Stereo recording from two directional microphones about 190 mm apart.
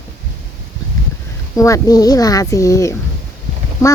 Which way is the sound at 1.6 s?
20° left (ahead or behind).